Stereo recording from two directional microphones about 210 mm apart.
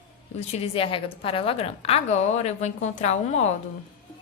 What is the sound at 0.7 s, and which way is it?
A woman's voice, 25° left (ahead or behind).